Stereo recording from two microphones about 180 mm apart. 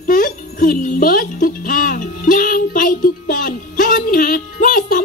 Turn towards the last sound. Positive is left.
turn(degrees=50)  # may be behind; listen again after turning